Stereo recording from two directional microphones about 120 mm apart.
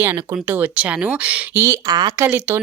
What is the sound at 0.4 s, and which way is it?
Speech, 15° right (ahead or behind).